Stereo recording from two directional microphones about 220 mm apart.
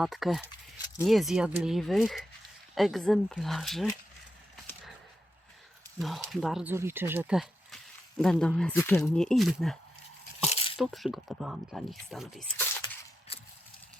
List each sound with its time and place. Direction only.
0.0 s speech: centre (ahead or behind)
6.0 s speech: centre (ahead or behind)
10.5 s a sound: 25° left (ahead or behind)
10.8 s speech: centre (ahead or behind)